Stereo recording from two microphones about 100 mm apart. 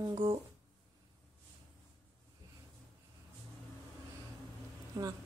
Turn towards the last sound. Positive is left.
turn(degrees=-35)  # may be behind; listen again after turning